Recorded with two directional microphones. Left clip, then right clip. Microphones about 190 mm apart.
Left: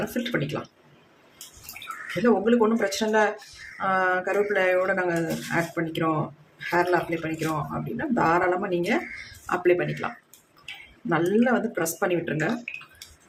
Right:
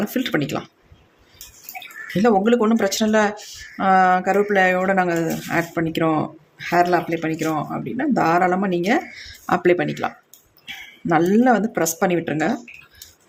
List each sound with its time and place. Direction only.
0.1 s speech: 45° right (ahead or behind)
2.2 s speech: 45° right (ahead or behind)
11.1 s speech: 40° right (ahead or behind)